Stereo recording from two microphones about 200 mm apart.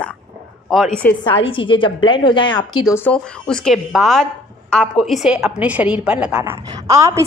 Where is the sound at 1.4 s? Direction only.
25° left (ahead or behind).